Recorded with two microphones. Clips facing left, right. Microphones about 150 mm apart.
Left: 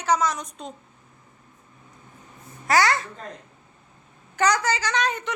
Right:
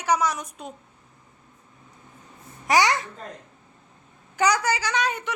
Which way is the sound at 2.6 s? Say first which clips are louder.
Even; 15° right (ahead or behind).